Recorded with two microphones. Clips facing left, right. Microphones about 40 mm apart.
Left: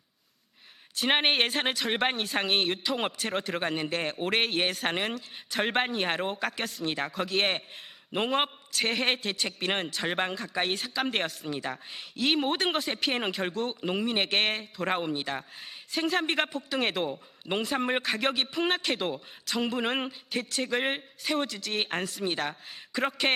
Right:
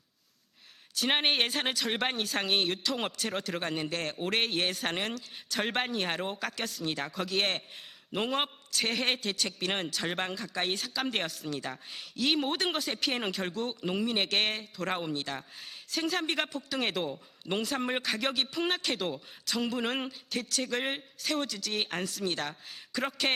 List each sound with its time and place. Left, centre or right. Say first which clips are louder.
0.9 s a man's voice: left 3 dB; centre
7.3 s a man's voice: left 3 dB; centre
11.4 s a man's voice: left 2 dB; left
11.7 s a man's voice: left 3 dB; centre